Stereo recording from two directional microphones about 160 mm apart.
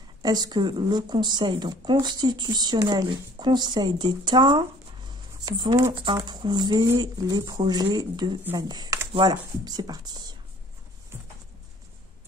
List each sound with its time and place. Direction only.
0.2 s speech: 25° right (ahead or behind)